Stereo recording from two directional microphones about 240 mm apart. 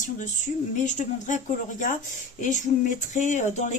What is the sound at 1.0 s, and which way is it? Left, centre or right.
Speech, left.